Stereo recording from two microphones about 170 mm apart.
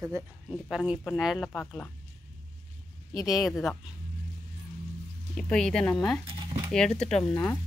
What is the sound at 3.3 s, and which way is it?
Speech, centre (ahead or behind).